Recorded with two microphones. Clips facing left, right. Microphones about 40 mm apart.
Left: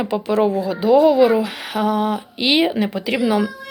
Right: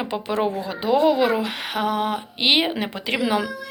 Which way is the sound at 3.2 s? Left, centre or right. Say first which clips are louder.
Left 4 dB; right.